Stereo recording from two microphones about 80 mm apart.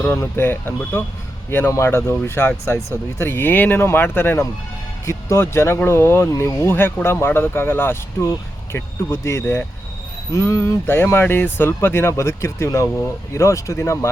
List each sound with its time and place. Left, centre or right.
0.2 s speech: left
10.8 s speech: left